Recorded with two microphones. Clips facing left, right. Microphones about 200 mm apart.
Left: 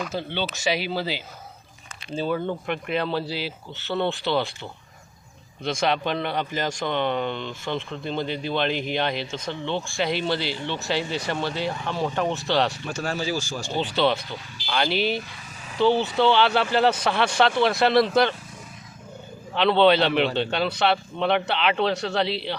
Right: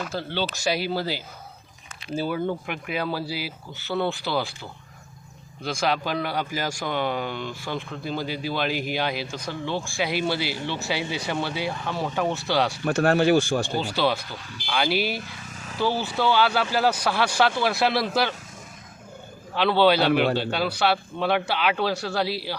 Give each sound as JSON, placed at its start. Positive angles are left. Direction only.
{"t": 0.9, "sound": "speech", "side_deg": -10}
{"t": 2.2, "sound": "a man's voice", "side_deg": -5}
{"t": 5.6, "sound": "a man's voice", "side_deg": -5}
{"t": 12.8, "sound": "speech", "side_deg": -60}
{"t": 13.7, "sound": "a man's voice", "side_deg": -5}
{"t": 19.5, "sound": "a man's voice", "side_deg": -5}